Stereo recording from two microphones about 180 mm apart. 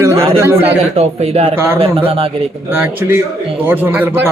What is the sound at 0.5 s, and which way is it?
A man's voice, 35° right (ahead or behind).